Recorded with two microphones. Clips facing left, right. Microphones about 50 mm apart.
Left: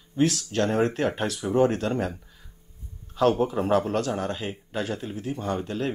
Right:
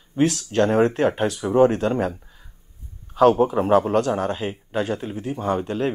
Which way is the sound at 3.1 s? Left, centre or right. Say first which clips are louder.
Right 6 dB; right.